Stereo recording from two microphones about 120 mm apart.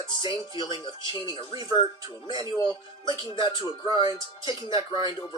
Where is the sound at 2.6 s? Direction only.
35° left (ahead or behind).